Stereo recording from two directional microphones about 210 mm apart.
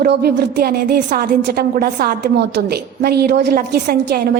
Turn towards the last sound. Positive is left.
turn(degrees=-50)  # may be behind; listen again after turning